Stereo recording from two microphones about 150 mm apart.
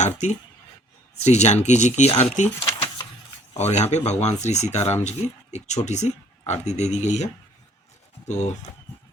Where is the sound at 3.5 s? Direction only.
50° left (ahead or behind).